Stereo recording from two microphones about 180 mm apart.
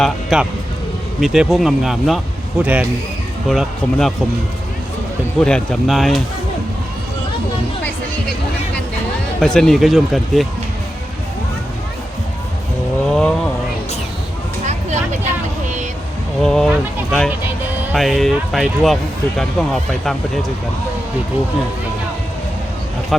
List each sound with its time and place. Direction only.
0.0 s speech: centre (ahead or behind)
5.4 s speech: 5° left (ahead or behind)
9.4 s speech: 5° left (ahead or behind)
13.1 s vehicle: 5° left (ahead or behind)
14.7 s a sound: 40° right (ahead or behind)
16.4 s speech: 5° left (ahead or behind)